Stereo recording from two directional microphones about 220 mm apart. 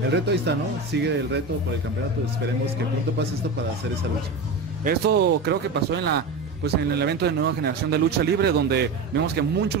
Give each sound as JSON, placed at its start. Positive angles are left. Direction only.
{"t": 0.1, "sound": "speech", "side_deg": -50}
{"t": 4.8, "sound": "speech", "side_deg": -50}